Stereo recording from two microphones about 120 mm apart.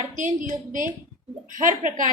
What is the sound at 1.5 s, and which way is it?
Speech, 90° right.